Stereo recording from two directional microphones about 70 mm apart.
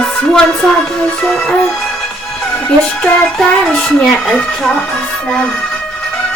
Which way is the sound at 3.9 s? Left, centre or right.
Centre.